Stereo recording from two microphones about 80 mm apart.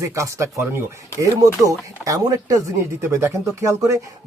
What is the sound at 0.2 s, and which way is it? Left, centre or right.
Speech, right.